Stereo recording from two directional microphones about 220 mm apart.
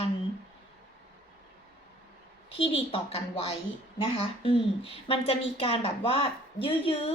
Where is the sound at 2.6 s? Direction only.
25° left (ahead or behind).